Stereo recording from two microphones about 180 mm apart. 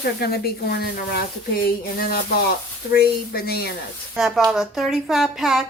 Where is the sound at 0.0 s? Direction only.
60° left (ahead or behind).